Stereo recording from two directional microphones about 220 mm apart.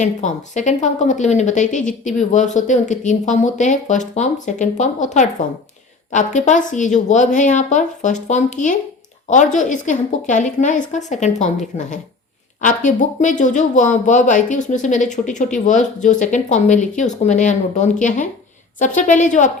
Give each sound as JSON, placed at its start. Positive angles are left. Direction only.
{"t": 0.0, "sound": "speech", "side_deg": 35}